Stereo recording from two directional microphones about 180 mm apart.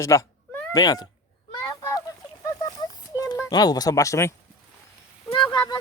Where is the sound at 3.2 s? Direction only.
20° left (ahead or behind).